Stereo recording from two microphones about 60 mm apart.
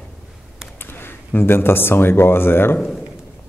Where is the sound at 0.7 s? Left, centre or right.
Left.